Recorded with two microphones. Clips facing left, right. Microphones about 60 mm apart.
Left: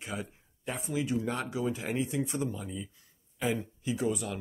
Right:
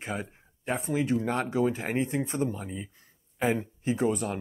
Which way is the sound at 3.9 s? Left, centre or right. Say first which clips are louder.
Right 4 dB; right.